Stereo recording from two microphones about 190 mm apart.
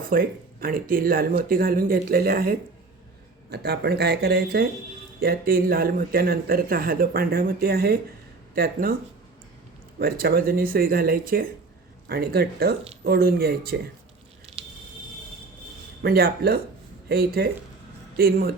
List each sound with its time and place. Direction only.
0.0 s speech: 50° right (ahead or behind)
10.0 s speech: 55° right (ahead or behind)
14.5 s squish: 30° right (ahead or behind)
16.0 s speech: 55° right (ahead or behind)